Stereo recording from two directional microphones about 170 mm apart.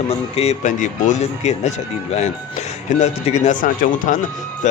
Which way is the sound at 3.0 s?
40° left (ahead or behind).